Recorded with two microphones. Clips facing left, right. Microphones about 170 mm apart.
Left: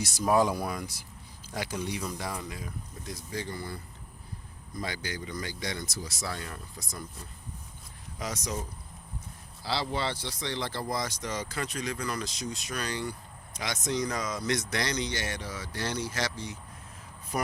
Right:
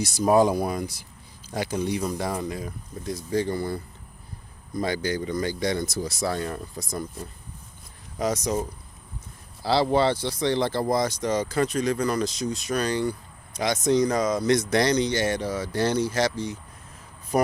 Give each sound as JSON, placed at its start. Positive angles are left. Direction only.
{"t": 0.3, "sound": "speech", "side_deg": -30}
{"t": 1.9, "sound": "speech", "side_deg": -40}
{"t": 4.8, "sound": "speech", "side_deg": -45}
{"t": 8.2, "sound": "speech", "side_deg": -40}
{"t": 9.6, "sound": "speech", "side_deg": -50}